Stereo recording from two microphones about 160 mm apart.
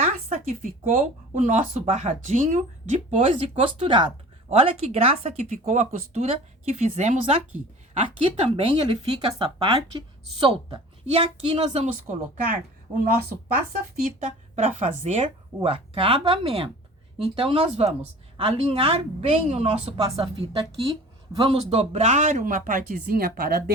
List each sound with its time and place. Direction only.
0.0 s a woman's voice: 50° right (ahead or behind)
14.0 s a woman's voice: 55° right (ahead or behind)